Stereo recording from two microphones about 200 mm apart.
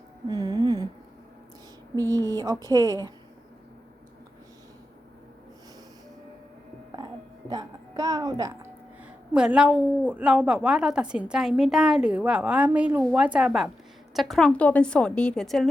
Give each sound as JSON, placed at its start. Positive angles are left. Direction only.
{"t": 0.3, "sound": "a sound", "side_deg": -20}
{"t": 2.1, "sound": "speech", "side_deg": -20}
{"t": 7.5, "sound": "music", "side_deg": -20}
{"t": 9.3, "sound": "a woman's voice", "side_deg": -5}